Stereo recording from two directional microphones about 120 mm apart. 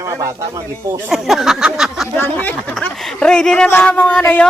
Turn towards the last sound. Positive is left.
turn(degrees=10)  # may be behind; listen again after turning